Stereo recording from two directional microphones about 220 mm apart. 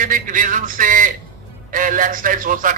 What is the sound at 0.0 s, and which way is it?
A man's voice, 35° right (ahead or behind).